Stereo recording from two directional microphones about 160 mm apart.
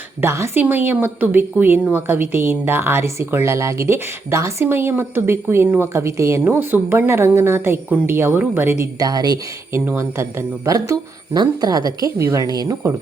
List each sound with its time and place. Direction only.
0.2 s speech: 15° right (ahead or behind)